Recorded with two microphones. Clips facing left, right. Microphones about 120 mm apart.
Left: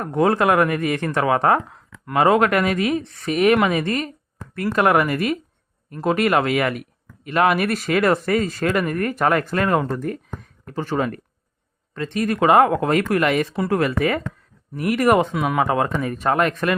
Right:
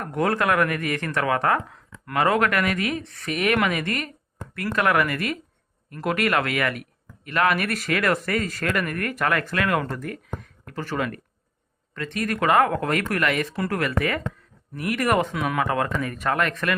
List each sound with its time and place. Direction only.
0.0 s speech: 25° left (ahead or behind)
10.8 s speech: 25° left (ahead or behind)